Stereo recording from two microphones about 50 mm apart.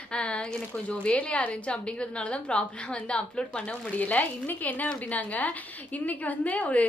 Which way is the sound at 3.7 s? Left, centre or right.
Left.